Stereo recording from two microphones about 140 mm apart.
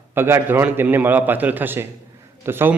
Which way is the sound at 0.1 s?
15° right (ahead or behind).